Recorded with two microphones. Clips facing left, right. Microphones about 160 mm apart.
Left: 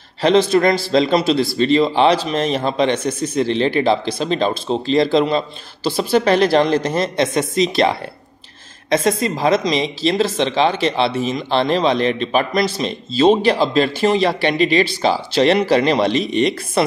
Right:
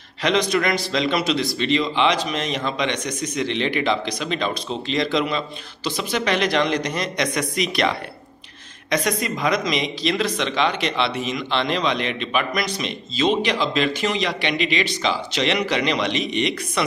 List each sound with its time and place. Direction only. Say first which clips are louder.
0.2 s speech: left 7 dB; 30° left (ahead or behind)
8.9 s speech: left 6 dB; 30° left (ahead or behind)